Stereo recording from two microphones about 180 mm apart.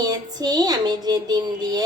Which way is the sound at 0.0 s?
20° right (ahead or behind).